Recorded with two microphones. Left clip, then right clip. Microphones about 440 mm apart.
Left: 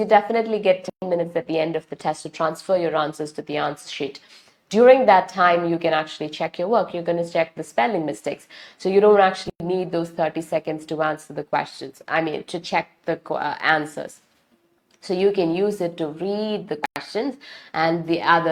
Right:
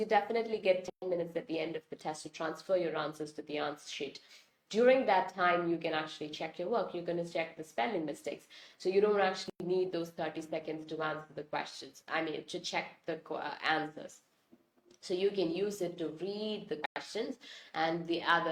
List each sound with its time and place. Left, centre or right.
0.0 s a woman's voice: left